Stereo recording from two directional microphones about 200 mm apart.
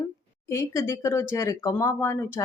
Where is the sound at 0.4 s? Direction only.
15° left (ahead or behind).